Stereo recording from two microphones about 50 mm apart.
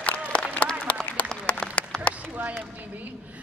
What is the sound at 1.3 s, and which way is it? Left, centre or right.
Applause, left.